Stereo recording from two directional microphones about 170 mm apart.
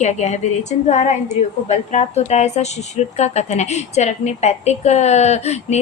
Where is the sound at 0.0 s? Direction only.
40° left (ahead or behind).